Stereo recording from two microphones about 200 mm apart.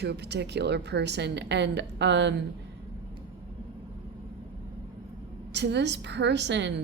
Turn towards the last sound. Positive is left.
turn(degrees=-60)  # may be behind; listen again after turning